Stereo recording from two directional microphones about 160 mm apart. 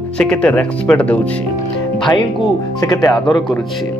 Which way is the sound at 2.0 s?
30° left (ahead or behind).